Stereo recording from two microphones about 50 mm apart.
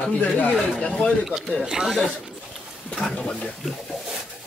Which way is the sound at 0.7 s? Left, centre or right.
Left.